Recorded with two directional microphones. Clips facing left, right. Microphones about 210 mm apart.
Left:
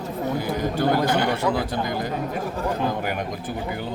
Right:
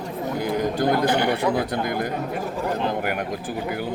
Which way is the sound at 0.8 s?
15° right (ahead or behind).